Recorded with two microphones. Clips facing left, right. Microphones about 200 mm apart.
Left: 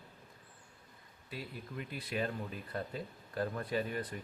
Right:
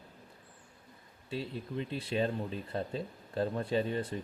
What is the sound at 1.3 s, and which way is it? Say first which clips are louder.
Speech: right 7 dB; 25° right (ahead or behind).